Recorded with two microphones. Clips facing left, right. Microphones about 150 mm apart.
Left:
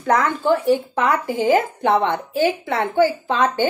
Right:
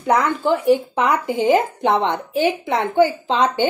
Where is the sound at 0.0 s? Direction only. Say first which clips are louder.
Right 1 dB; 15° right (ahead or behind).